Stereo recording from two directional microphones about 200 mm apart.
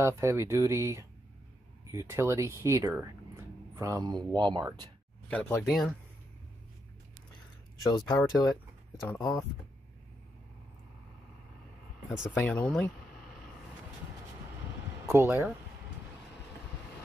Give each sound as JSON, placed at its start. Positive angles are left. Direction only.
{"t": 0.0, "sound": "speech", "side_deg": -15}
{"t": 5.3, "sound": "speech", "side_deg": 5}
{"t": 7.8, "sound": "speech", "side_deg": 20}
{"t": 12.3, "sound": "speech", "side_deg": 10}
{"t": 15.0, "sound": "speech", "side_deg": -15}